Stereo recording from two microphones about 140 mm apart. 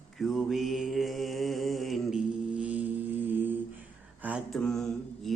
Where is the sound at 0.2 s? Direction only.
Centre (ahead or behind).